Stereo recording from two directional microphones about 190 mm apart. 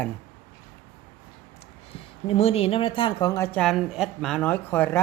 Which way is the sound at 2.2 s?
30° left (ahead or behind).